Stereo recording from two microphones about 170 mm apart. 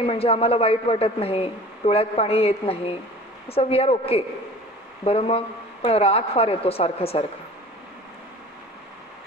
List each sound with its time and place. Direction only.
0.0 s a man's voice: 35° left (ahead or behind)